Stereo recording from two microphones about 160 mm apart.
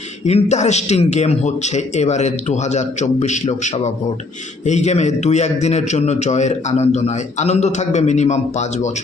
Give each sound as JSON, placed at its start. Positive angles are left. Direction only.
{"t": 0.3, "sound": "a man's voice", "side_deg": 45}